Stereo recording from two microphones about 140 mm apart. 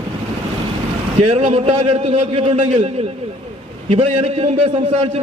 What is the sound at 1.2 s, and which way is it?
A man's voice, 50° right (ahead or behind).